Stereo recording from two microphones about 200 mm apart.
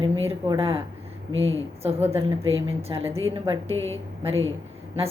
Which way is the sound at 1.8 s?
30° right (ahead or behind).